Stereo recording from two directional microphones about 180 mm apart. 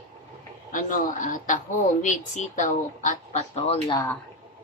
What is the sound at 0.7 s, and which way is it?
Speech, 45° left (ahead or behind).